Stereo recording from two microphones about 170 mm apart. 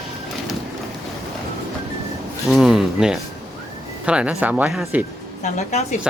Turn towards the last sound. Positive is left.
turn(degrees=45)  # may be behind; listen again after turning